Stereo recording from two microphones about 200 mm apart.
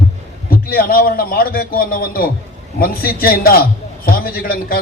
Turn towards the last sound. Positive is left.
turn(degrees=45)  # may be behind; listen again after turning